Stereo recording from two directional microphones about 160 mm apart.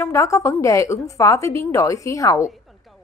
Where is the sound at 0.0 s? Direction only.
20° left (ahead or behind).